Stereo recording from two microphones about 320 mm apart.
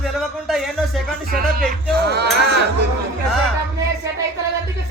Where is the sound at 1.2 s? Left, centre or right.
Right.